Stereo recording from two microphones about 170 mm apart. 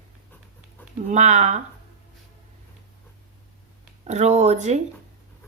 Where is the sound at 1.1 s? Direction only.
45° right (ahead or behind).